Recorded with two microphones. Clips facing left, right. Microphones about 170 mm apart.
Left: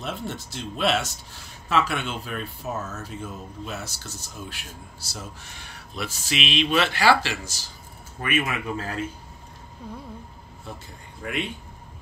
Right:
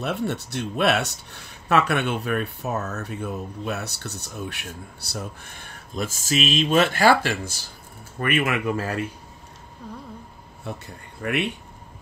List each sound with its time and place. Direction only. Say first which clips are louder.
0.0 s speech: right 6 dB; 65° right (ahead or behind)
9.8 s a sound: even; centre (ahead or behind)
10.7 s speech: right 5 dB; 65° right (ahead or behind)